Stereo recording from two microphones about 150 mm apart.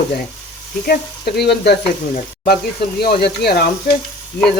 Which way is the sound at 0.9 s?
90° left.